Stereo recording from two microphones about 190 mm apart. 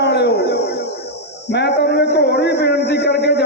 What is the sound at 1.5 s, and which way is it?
A man's voice, 60° left (ahead or behind).